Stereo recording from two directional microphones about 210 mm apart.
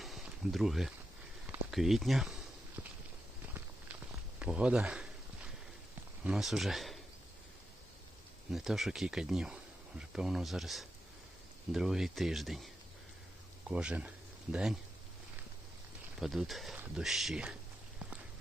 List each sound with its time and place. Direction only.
0.0 s a sound: centre (ahead or behind)
1.7 s speech: centre (ahead or behind)
2.8 s walk: 5° right (ahead or behind)
4.4 s a sound: 5° right (ahead or behind)
6.2 s speech: centre (ahead or behind)
8.5 s speech: centre (ahead or behind)
16.2 s speech: centre (ahead or behind)